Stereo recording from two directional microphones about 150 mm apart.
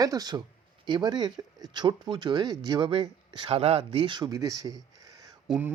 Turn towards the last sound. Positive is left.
turn(degrees=-5)  # may be behind; listen again after turning